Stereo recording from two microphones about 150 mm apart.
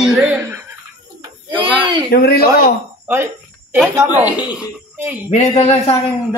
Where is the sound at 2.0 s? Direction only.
90° left.